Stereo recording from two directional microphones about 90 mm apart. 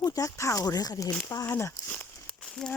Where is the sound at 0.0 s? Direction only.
40° left (ahead or behind).